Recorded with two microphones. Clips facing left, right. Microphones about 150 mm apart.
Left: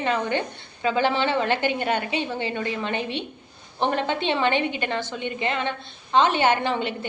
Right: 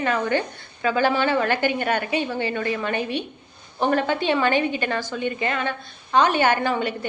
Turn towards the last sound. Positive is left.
turn(degrees=20)  # may be behind; listen again after turning